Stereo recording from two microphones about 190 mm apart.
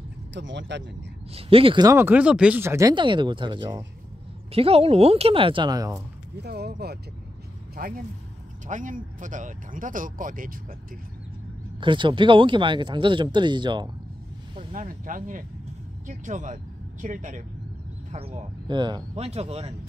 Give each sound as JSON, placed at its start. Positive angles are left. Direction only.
{"t": 0.3, "sound": "speech", "side_deg": -70}
{"t": 1.3, "sound": "speech", "side_deg": -30}
{"t": 6.3, "sound": "speech", "side_deg": -60}
{"t": 11.8, "sound": "speech", "side_deg": -25}
{"t": 14.7, "sound": "speech", "side_deg": -45}
{"t": 18.7, "sound": "speech", "side_deg": -25}